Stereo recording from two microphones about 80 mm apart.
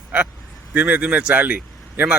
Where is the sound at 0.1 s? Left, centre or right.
Right.